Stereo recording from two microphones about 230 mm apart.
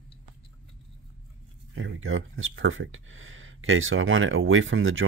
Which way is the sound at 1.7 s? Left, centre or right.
Right.